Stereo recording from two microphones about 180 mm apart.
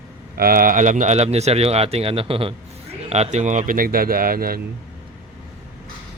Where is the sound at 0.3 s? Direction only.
55° right (ahead or behind).